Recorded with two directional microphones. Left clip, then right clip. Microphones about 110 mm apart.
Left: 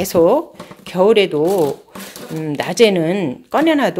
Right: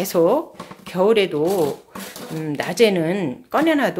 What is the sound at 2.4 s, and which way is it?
Speech, 40° left (ahead or behind).